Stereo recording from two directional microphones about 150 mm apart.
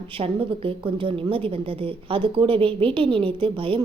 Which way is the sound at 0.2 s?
35° right (ahead or behind).